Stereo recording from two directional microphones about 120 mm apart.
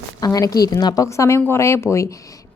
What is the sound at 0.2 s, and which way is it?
A woman's voice, 30° left (ahead or behind).